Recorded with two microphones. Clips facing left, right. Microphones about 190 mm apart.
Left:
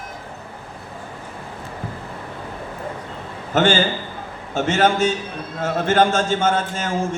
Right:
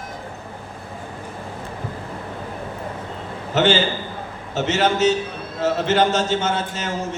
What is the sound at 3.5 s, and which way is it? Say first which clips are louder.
A man's voice: left 1 dB; 50° left (ahead or behind).